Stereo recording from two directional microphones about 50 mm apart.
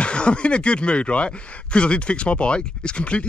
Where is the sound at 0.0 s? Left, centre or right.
Left.